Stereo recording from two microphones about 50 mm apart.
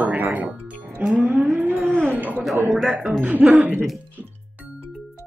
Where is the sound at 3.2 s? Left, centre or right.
Right.